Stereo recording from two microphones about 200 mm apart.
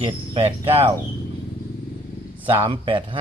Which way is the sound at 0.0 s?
30° right (ahead or behind).